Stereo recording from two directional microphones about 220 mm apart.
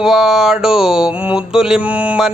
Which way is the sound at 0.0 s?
Centre (ahead or behind).